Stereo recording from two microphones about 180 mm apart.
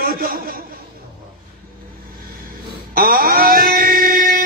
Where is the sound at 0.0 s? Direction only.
55° right (ahead or behind).